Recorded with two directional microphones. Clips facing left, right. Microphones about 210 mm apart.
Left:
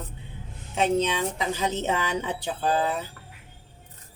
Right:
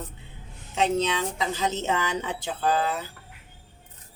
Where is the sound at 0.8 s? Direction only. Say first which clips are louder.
Left 1 dB; 15° left (ahead or behind).